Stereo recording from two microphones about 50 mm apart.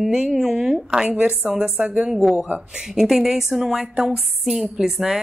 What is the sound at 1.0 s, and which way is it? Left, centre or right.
A woman's voice, right.